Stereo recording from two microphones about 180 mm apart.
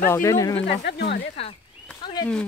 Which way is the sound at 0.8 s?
65° left (ahead or behind).